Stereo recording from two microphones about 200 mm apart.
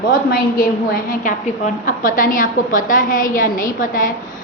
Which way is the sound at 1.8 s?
40° left (ahead or behind).